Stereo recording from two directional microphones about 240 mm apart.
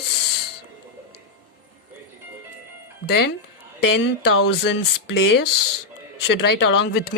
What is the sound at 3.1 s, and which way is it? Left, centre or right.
Speech, left.